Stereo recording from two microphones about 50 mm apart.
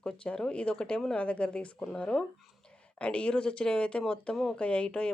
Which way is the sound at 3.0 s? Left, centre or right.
Left.